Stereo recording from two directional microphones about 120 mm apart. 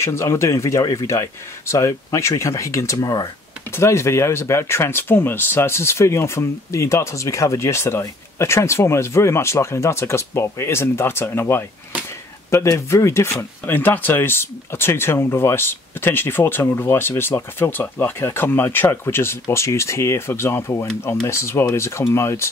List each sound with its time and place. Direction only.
0.0 s speech: 25° left (ahead or behind)